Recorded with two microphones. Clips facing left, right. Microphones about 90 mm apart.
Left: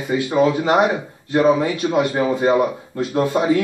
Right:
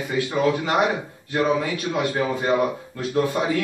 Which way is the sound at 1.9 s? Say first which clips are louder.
Left 4 dB; 25° left (ahead or behind).